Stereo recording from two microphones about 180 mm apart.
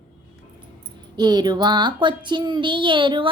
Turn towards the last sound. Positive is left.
turn(degrees=-25)  # may be behind; listen again after turning